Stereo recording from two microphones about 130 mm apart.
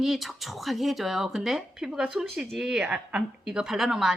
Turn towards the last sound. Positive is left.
turn(degrees=-5)  # may be behind; listen again after turning